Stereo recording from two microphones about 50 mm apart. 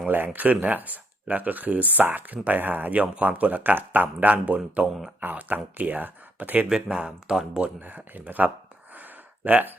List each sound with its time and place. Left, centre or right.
0.3 s speech: right
6.7 s speech: centre
7.6 s speech: right